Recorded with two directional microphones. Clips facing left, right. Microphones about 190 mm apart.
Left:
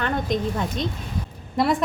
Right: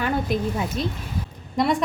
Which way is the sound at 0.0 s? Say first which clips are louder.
Even; 5° right (ahead or behind).